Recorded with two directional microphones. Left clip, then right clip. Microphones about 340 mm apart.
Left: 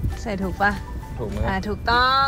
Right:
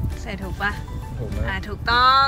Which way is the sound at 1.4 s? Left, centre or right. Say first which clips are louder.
Left 2 dB; centre.